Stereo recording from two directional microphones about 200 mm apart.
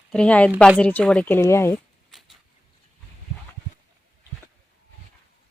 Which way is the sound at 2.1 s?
Centre (ahead or behind).